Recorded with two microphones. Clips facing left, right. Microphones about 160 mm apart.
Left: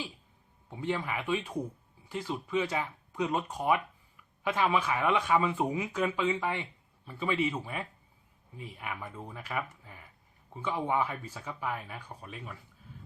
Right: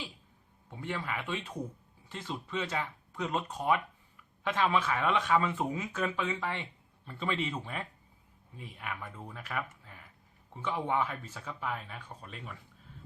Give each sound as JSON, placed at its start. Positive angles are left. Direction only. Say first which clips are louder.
{"t": 0.7, "sound": "speech", "louder": "left 4 dB", "side_deg": 15}